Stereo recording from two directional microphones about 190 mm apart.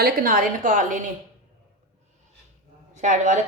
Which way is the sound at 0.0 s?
50° right (ahead or behind).